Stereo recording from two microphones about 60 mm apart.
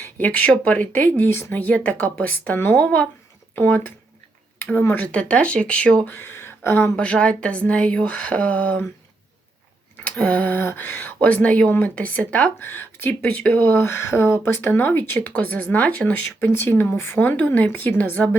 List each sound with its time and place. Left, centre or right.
0.0 s speech: left
6.1 s speech: left
6.9 s speech: centre
10.1 s speech: left
10.6 s speech: left
12.5 s speech: left
13.1 s speech: left
16.5 s speech: left
17.2 s speech: left